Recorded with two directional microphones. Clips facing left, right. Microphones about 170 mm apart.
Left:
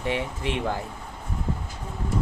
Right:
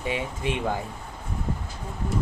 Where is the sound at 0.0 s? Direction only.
15° right (ahead or behind).